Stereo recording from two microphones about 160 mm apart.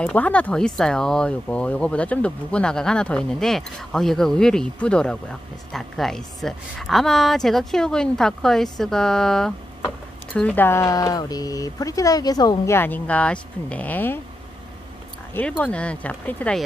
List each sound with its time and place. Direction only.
0.0 s speech: 10° left (ahead or behind)
15.6 s speech: 5° left (ahead or behind)